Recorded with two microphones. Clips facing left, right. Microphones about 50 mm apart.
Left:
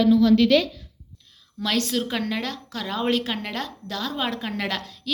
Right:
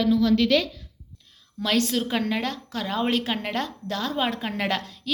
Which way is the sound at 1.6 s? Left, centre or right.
Right.